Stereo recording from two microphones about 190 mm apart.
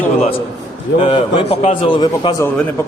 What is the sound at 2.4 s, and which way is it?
Speech, 15° left (ahead or behind).